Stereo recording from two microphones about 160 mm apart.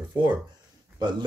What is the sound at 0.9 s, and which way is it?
Speech, 25° right (ahead or behind).